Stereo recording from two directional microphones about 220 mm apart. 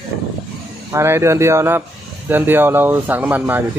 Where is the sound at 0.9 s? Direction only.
10° right (ahead or behind).